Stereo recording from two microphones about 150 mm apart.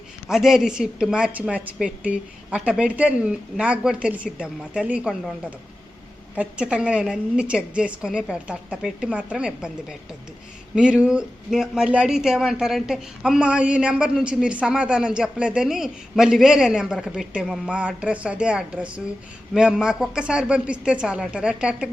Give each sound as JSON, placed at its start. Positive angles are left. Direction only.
{"t": 0.3, "sound": "a woman's voice", "side_deg": 0}
{"t": 10.8, "sound": "speech", "side_deg": -5}